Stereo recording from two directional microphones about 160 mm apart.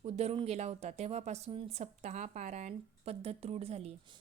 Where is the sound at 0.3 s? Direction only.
40° right (ahead or behind).